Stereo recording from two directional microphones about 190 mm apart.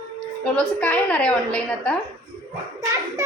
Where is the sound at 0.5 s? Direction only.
10° left (ahead or behind).